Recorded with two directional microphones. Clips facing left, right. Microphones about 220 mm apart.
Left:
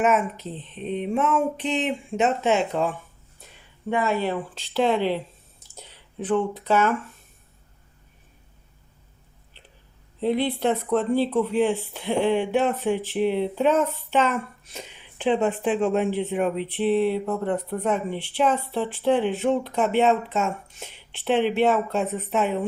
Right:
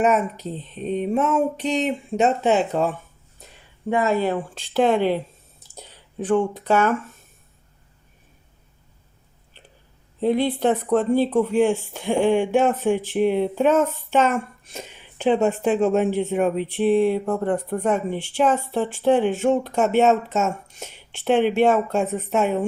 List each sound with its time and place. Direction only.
0.0 s speech: 40° right (ahead or behind)
10.2 s speech: 45° right (ahead or behind)